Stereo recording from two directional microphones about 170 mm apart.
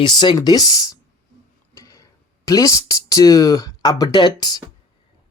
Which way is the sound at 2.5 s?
20° left (ahead or behind).